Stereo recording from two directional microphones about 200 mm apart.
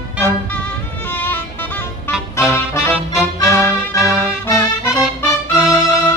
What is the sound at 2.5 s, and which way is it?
Music, 15° left (ahead or behind).